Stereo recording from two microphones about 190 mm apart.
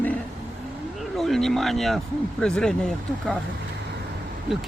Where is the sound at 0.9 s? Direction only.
Centre (ahead or behind).